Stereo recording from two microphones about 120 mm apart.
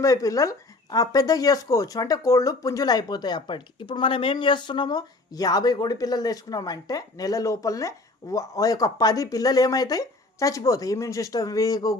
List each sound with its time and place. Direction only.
0.0 s speech: 25° left (ahead or behind)